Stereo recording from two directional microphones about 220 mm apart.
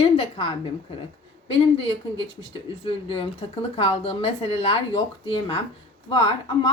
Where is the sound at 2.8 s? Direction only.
25° left (ahead or behind).